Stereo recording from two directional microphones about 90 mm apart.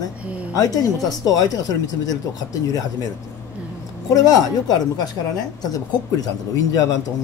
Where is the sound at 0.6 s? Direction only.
45° left (ahead or behind).